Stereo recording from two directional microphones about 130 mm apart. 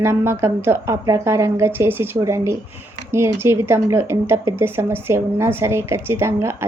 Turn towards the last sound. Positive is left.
turn(degrees=-20)  # may be behind; listen again after turning